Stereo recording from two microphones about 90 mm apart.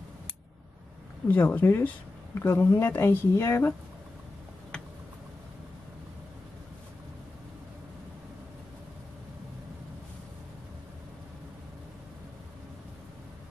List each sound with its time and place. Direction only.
1.3 s speech: 20° left (ahead or behind)